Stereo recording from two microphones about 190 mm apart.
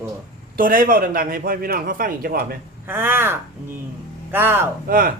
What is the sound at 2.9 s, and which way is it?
Speech, 10° right (ahead or behind).